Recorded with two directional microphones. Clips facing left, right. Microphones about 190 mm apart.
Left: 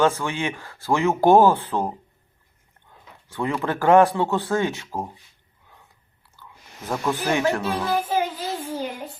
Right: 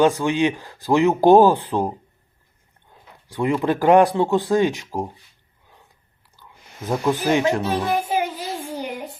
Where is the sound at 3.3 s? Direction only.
15° right (ahead or behind).